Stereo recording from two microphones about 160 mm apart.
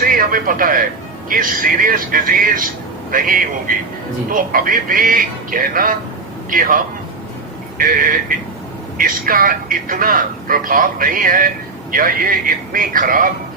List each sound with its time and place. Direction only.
0.0 s speech: 60° right (ahead or behind)